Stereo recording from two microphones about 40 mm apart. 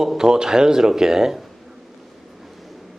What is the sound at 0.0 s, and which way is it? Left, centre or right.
Speech, centre.